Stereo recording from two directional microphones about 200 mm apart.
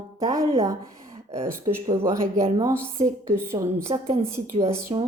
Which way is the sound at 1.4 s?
15° right (ahead or behind).